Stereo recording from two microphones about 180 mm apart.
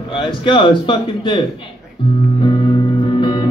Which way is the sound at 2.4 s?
30° left (ahead or behind).